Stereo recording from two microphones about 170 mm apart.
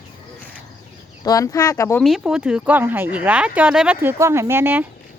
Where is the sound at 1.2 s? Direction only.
20° left (ahead or behind).